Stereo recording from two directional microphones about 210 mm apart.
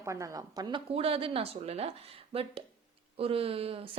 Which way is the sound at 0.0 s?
15° right (ahead or behind).